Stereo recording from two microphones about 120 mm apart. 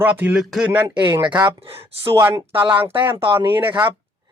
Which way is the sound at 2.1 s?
20° right (ahead or behind).